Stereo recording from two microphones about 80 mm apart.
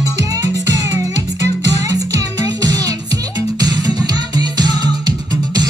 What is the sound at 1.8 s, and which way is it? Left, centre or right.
Music, right.